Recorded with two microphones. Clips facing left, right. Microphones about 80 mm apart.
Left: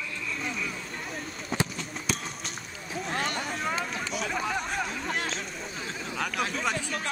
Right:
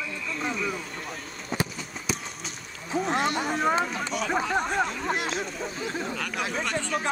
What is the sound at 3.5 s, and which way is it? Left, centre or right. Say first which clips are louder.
Speech: right 7 dB; right.